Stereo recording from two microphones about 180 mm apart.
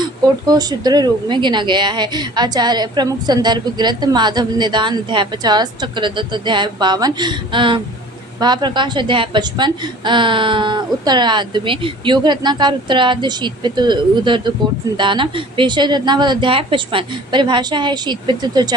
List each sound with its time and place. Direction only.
0.0 s speech: 20° right (ahead or behind)